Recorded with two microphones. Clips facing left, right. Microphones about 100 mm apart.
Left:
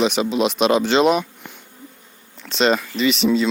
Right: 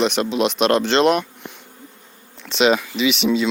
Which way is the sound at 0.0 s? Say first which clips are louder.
Even; centre (ahead or behind).